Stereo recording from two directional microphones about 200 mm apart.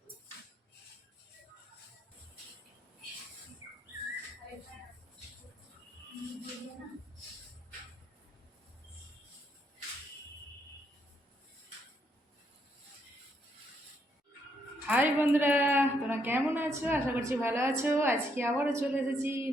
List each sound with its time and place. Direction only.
14.8 s a woman's voice: 10° right (ahead or behind)